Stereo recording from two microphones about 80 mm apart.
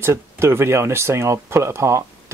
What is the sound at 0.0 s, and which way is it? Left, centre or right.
Speech, right.